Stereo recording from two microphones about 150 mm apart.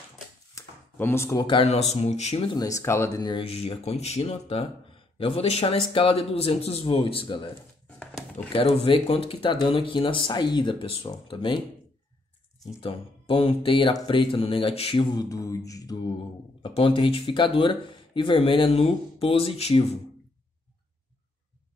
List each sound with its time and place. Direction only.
0.6 s speech: 15° left (ahead or behind)
1.7 s speech: 45° left (ahead or behind)
2.4 s speech: 25° left (ahead or behind)
3.4 s speech: 40° left (ahead or behind)
8.5 s speech: 35° left (ahead or behind)
12.8 s speech: 40° left (ahead or behind)
15.1 s speech: 25° left (ahead or behind)
16.6 s speech: 35° left (ahead or behind)